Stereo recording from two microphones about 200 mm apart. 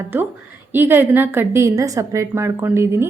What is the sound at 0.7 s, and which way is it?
A woman's voice, 10° right (ahead or behind).